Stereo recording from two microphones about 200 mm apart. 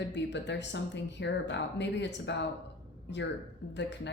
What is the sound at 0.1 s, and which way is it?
A woman's voice, 60° left (ahead or behind).